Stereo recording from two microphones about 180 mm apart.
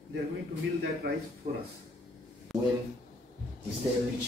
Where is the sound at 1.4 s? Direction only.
40° right (ahead or behind).